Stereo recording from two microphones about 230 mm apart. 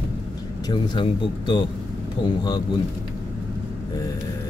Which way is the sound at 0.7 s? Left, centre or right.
Left.